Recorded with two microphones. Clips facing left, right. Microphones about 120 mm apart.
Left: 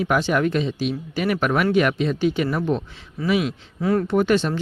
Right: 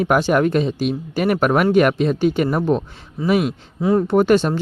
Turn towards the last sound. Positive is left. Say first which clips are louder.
# right 4 dB
turn(degrees=-45)  # may be behind; listen again after turning